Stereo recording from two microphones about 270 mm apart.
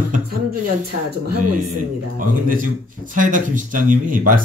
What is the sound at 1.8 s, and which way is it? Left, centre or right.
Speech, right.